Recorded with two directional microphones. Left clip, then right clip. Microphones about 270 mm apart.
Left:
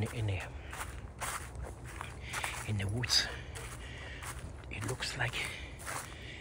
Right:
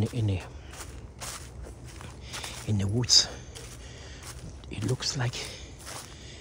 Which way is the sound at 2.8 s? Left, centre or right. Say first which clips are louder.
Right 9 dB; centre.